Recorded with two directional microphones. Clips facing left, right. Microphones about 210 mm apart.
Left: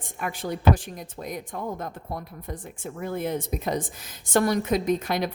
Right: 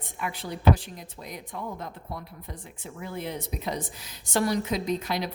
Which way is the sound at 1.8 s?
50° left (ahead or behind).